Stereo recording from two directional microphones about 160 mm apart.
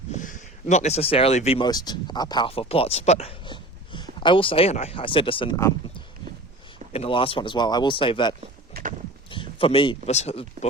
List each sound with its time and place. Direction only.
0.2 s speech: 50° left (ahead or behind)
1.6 s speech: 25° left (ahead or behind)
6.9 s speech: 35° left (ahead or behind)
9.3 s a sound: 35° left (ahead or behind)
10.1 s speech: 40° left (ahead or behind)